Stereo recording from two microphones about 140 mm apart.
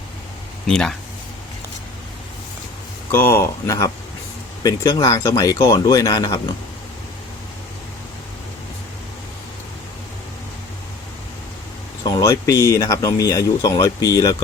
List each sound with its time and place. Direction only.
0.7 s speech: 5° left (ahead or behind)
3.1 s speech: 15° left (ahead or behind)
12.0 s speech: 25° left (ahead or behind)